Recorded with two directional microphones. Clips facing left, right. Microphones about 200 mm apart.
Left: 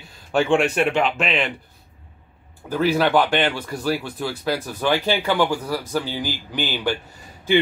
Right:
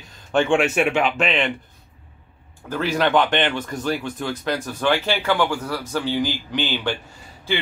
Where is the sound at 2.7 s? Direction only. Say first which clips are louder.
Left 2 dB; 10° left (ahead or behind).